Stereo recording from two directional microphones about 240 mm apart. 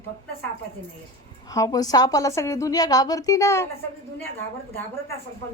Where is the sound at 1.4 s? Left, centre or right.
Centre.